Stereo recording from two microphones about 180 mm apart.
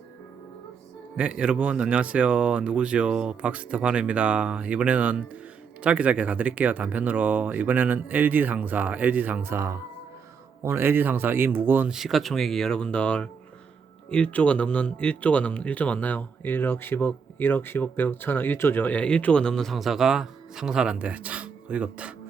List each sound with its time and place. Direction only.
1.1 s speech: 5° right (ahead or behind)